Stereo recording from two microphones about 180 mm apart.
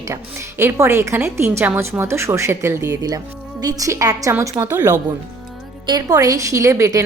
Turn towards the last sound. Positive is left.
turn(degrees=-15)  # may be behind; listen again after turning